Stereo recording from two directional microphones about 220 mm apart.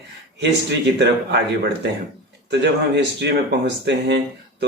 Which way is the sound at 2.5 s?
50° right (ahead or behind).